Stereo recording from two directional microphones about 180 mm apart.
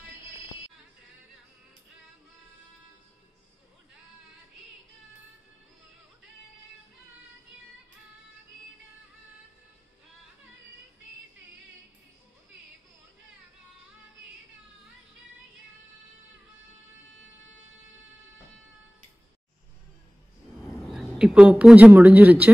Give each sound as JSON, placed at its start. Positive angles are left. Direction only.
{"t": 20.8, "sound": "a woman's voice", "side_deg": 0}